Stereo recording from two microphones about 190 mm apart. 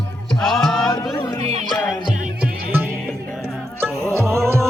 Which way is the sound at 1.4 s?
30° right (ahead or behind).